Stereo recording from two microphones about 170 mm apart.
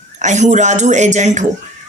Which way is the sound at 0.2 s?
45° right (ahead or behind).